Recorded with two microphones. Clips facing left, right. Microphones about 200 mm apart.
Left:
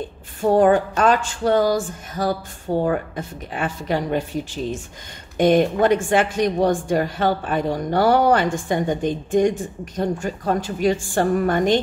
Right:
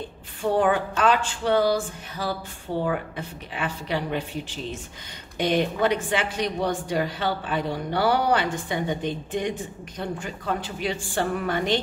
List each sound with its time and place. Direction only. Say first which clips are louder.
0.4 s speech: left 6 dB; 45° left (ahead or behind)